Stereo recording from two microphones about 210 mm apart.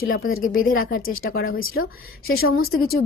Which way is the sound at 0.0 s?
45° left (ahead or behind).